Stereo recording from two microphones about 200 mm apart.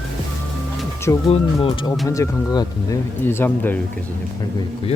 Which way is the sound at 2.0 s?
15° left (ahead or behind).